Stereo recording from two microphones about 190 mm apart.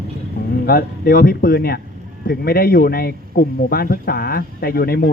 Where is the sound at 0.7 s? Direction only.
50° left (ahead or behind).